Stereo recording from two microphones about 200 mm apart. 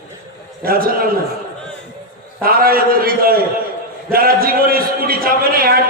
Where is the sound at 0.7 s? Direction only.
45° right (ahead or behind).